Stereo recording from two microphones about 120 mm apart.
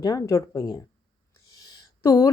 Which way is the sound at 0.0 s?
30° left (ahead or behind).